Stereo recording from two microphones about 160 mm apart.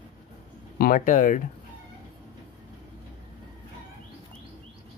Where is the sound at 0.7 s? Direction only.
60° left (ahead or behind).